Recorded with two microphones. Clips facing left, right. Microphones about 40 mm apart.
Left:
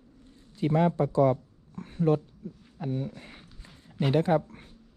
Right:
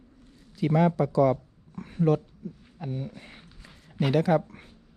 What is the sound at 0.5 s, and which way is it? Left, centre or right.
Speech, right.